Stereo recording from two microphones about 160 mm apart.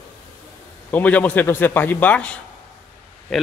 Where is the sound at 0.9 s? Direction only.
10° left (ahead or behind).